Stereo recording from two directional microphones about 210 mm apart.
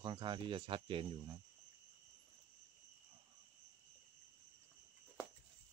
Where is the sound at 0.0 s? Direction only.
20° right (ahead or behind).